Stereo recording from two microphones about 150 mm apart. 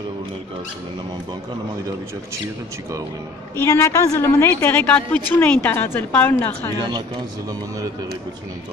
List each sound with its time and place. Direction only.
3.7 s a woman's voice: 20° left (ahead or behind)
6.8 s a man's voice: 30° right (ahead or behind)